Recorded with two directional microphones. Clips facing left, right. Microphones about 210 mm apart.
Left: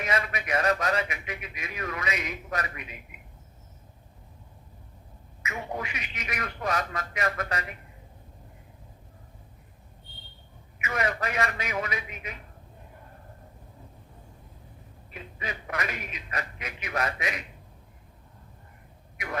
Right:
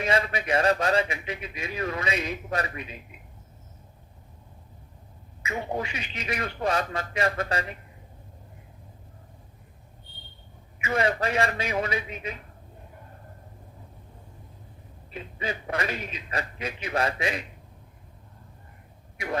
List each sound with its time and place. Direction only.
0.0 s a man's voice: 30° right (ahead or behind)
5.4 s a man's voice: 30° right (ahead or behind)
10.8 s a man's voice: 30° right (ahead or behind)
15.1 s a man's voice: 30° right (ahead or behind)
19.1 s speech: 30° right (ahead or behind)